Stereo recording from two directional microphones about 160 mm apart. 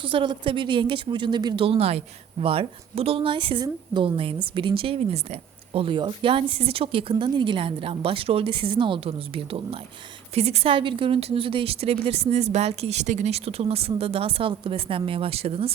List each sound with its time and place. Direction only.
0.0 s a woman's voice: 35° right (ahead or behind)